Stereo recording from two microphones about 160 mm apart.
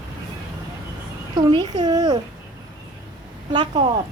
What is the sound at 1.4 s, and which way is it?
Speech, 30° right (ahead or behind).